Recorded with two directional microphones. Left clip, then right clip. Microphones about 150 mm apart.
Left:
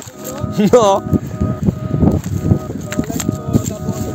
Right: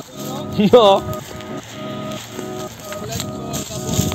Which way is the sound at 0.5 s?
45° left (ahead or behind).